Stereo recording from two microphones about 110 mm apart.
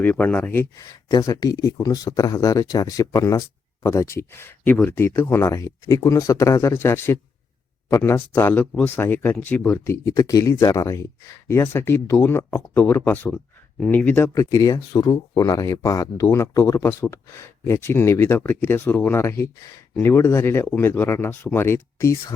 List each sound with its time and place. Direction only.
0.0 s speech: 15° left (ahead or behind)
0.8 s speech: 35° left (ahead or behind); by 14.3 s 15° left (ahead or behind)
14.3 s speech: 30° left (ahead or behind)